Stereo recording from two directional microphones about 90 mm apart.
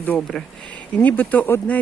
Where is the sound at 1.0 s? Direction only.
15° left (ahead or behind).